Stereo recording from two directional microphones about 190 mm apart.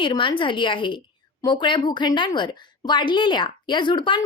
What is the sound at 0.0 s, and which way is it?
A woman's voice, 25° left (ahead or behind).